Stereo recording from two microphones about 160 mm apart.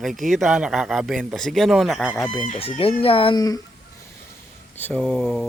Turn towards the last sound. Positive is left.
turn(degrees=0)  # may be behind; listen again after turning